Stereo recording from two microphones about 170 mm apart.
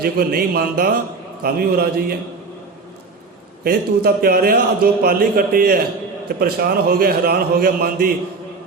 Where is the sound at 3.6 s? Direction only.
60° right (ahead or behind).